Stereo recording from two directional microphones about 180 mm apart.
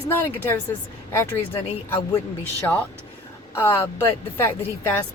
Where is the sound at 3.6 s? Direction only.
15° left (ahead or behind).